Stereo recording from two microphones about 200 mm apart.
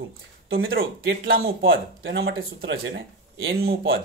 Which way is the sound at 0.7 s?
50° right (ahead or behind).